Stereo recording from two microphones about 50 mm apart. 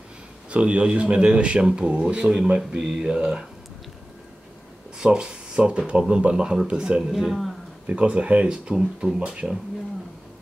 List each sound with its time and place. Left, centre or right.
0.5 s speech: right
4.9 s speech: centre
7.1 s speech: centre
7.9 s speech: right